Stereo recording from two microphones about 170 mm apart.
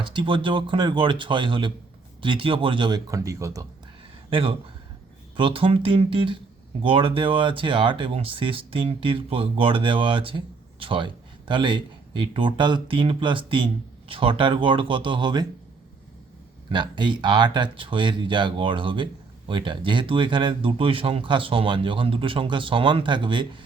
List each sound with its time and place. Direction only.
0.0 s speech: 30° right (ahead or behind)
4.3 s speech: 30° right (ahead or behind)
16.6 s speech: 25° right (ahead or behind)